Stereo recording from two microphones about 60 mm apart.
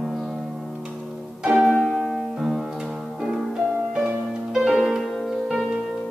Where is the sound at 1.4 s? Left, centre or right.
Centre.